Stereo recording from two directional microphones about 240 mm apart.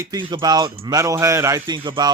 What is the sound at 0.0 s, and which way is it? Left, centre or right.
Speech, centre.